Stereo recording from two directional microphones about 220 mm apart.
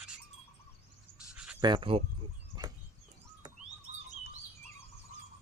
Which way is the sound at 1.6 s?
20° right (ahead or behind).